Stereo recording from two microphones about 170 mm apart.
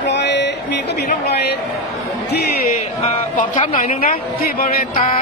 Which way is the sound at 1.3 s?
70° left (ahead or behind).